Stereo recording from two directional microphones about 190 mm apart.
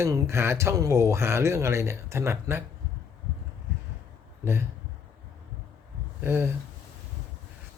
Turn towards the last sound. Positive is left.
turn(degrees=-10)  # may be behind; listen again after turning